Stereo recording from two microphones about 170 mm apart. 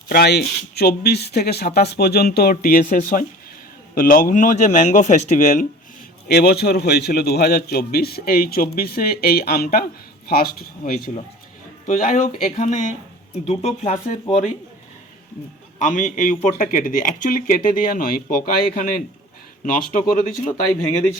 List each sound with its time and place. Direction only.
0.1 s speech: 70° left (ahead or behind); by 5.6 s 50° left (ahead or behind)
6.2 s a man's voice: 70° left (ahead or behind)
11.9 s speech: 45° left (ahead or behind)
15.8 s speech: 50° left (ahead or behind)